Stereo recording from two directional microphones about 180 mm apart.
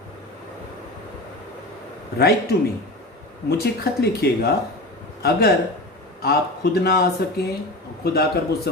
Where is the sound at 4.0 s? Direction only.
65° left (ahead or behind).